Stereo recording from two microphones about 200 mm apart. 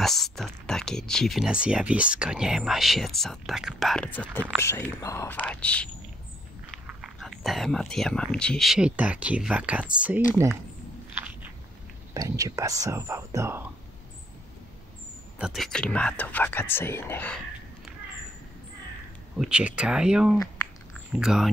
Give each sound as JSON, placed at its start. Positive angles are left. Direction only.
{"t": 0.0, "sound": "speech", "side_deg": 0}
{"t": 6.9, "sound": "speech", "side_deg": 0}
{"t": 12.1, "sound": "speech", "side_deg": -15}
{"t": 15.3, "sound": "speech", "side_deg": 0}
{"t": 19.3, "sound": "speech", "side_deg": -5}